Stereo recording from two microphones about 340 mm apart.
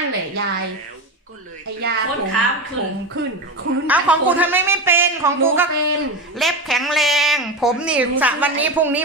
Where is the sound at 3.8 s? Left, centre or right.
Centre.